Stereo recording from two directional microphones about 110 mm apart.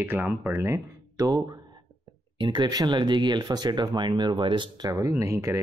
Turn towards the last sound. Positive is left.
turn(degrees=-25)  # may be behind; listen again after turning